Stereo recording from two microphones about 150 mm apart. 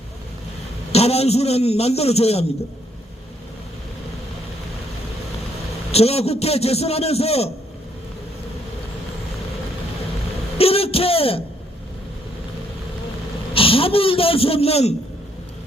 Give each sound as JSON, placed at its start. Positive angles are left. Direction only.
{"t": 0.9, "sound": "a man's voice", "side_deg": 45}
{"t": 5.9, "sound": "a man's voice", "side_deg": 45}
{"t": 10.6, "sound": "a sound", "side_deg": 40}
{"t": 13.5, "sound": "a man's voice", "side_deg": 40}